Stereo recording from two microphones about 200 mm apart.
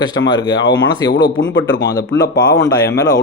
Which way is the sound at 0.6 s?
60° left (ahead or behind).